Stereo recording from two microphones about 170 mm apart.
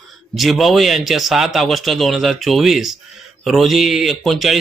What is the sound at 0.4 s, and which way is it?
A man's voice, centre (ahead or behind).